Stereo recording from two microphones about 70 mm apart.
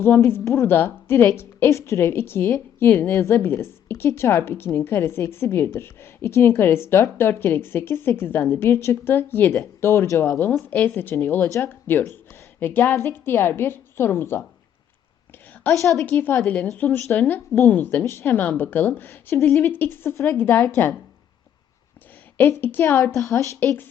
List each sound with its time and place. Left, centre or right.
0.3 s a woman's voice: left
11.4 s speech: left
11.7 s a woman's voice: left
15.7 s speech: left
16.8 s a woman's voice: left
17.9 s a woman's voice: left
19.7 s a woman's voice: left
22.4 s a woman's voice: left
23.1 s speech: left